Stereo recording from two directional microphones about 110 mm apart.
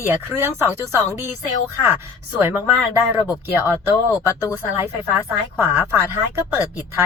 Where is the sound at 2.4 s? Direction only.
20° right (ahead or behind).